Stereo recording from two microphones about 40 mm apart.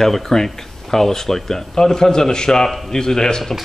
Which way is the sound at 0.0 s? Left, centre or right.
Centre.